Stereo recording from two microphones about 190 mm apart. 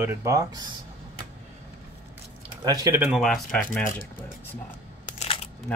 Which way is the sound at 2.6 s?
20° right (ahead or behind).